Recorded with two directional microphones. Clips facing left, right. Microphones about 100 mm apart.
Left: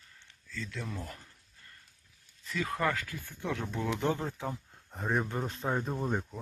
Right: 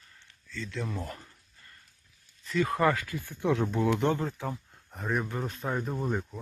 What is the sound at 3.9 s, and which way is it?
Speech, centre (ahead or behind).